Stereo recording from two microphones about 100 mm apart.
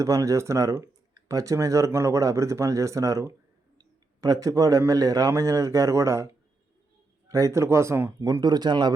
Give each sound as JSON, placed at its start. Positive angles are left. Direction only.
{"t": 0.0, "sound": "speech", "side_deg": -35}
{"t": 3.8, "sound": "a sound", "side_deg": -40}
{"t": 4.9, "sound": "speech", "side_deg": -40}
{"t": 7.3, "sound": "speech", "side_deg": -35}
{"t": 8.2, "sound": "speech", "side_deg": -40}